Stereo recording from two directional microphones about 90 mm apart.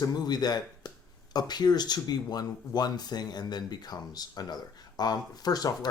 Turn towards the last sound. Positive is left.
turn(degrees=45)  # may be behind; listen again after turning